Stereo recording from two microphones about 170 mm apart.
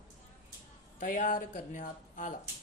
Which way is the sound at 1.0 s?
50° left (ahead or behind).